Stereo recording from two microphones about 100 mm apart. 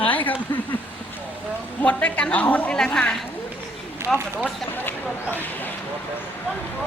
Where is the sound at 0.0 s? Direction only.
15° left (ahead or behind).